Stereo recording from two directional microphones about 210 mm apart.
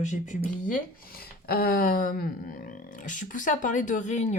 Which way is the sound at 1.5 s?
45° left (ahead or behind).